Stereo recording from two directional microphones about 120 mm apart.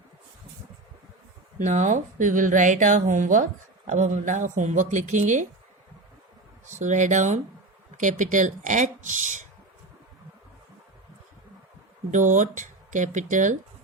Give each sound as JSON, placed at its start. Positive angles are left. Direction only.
{"t": 1.5, "sound": "speech", "side_deg": -90}
{"t": 6.7, "sound": "speech", "side_deg": -90}
{"t": 7.9, "sound": "speech", "side_deg": -90}
{"t": 12.1, "sound": "speech", "side_deg": -90}